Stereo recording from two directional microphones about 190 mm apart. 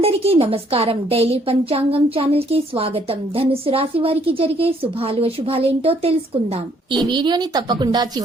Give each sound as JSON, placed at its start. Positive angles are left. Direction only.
{"t": 0.0, "sound": "a woman's voice", "side_deg": -30}